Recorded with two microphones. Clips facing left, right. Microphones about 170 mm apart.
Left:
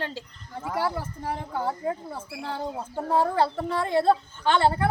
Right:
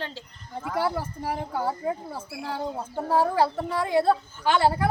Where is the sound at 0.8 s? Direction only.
10° right (ahead or behind).